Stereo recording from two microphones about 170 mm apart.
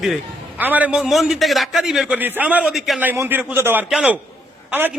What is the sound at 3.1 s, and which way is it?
A man's voice, 10° right (ahead or behind).